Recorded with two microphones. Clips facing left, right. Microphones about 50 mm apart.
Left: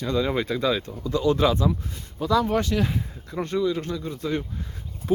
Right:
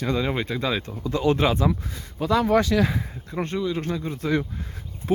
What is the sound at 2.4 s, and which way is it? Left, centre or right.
Speech, right.